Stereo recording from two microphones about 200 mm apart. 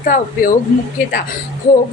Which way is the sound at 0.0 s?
45° left (ahead or behind).